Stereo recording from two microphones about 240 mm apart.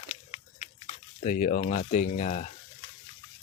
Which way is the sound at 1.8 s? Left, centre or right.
Left.